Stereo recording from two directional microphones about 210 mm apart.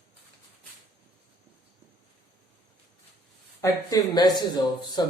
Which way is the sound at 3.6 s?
20° left (ahead or behind).